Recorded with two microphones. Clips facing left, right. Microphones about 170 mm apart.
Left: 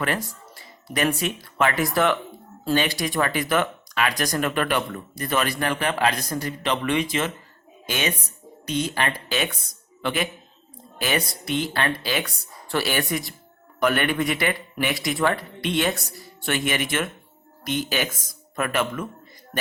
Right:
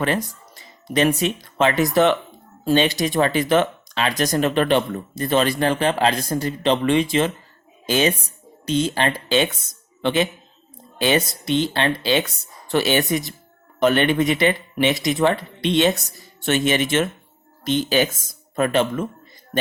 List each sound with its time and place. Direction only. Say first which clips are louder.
0.0 s a man's voice: right 4 dB; 20° right (ahead or behind)